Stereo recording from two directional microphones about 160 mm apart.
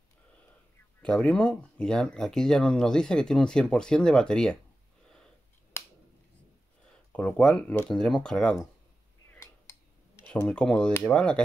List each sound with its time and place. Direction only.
1.0 s speech: 5° left (ahead or behind)
6.9 s speech: 5° left (ahead or behind)
9.3 s a sound: 15° left (ahead or behind)
10.2 s speech: 10° left (ahead or behind)